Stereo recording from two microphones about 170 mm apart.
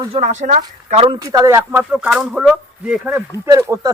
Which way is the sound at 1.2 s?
20° right (ahead or behind).